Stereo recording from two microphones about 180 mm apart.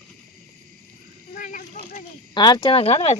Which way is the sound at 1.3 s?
45° left (ahead or behind).